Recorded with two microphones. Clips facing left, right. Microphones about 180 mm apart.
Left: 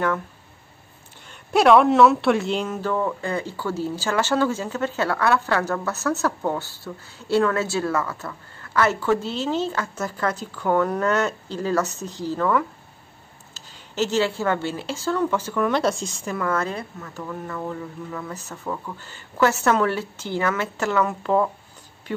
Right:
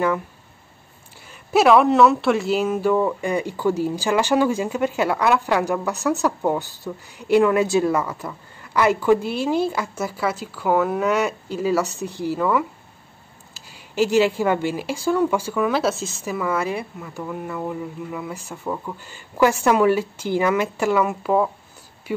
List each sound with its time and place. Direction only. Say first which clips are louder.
1.5 s speech: right 1 dB; centre (ahead or behind)